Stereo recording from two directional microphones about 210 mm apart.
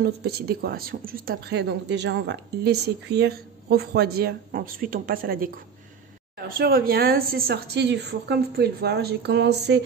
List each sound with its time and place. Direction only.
0.0 s speech: 50° right (ahead or behind)
6.6 s speech: 45° right (ahead or behind)